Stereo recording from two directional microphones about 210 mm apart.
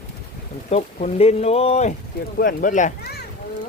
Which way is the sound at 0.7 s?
30° left (ahead or behind).